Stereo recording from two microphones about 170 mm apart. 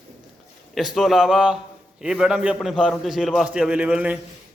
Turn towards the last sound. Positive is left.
turn(degrees=-10)  # may be behind; listen again after turning